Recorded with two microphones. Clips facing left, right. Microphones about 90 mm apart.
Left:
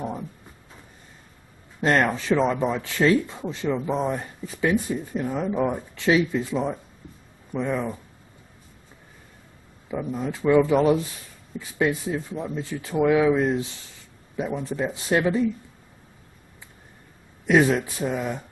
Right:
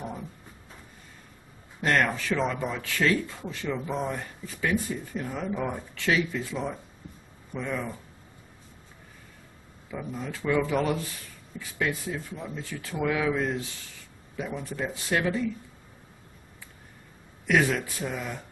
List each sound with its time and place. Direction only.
1.8 s speech: 25° left (ahead or behind)
9.8 s speech: 20° left (ahead or behind)
17.5 s speech: 20° left (ahead or behind)